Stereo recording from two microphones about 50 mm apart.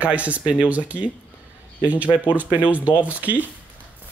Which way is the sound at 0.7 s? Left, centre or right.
Right.